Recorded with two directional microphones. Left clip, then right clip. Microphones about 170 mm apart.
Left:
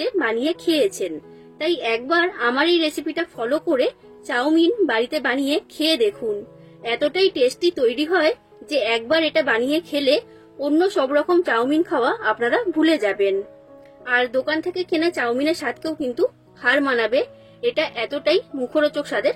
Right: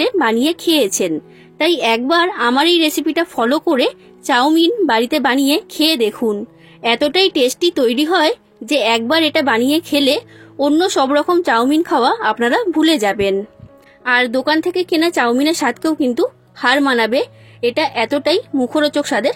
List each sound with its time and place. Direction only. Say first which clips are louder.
0.0 s a woman's voice: right 6 dB; 55° right (ahead or behind)